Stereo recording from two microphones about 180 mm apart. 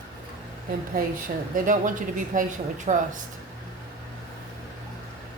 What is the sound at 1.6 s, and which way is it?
A woman's voice, 45° right (ahead or behind).